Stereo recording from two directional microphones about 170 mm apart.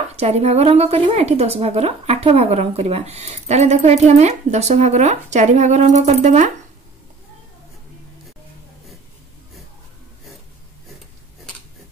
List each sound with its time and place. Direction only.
0.1 s a woman's voice: 40° right (ahead or behind)